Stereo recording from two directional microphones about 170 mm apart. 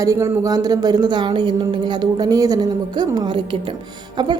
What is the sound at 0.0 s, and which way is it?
A woman's voice, 20° right (ahead or behind).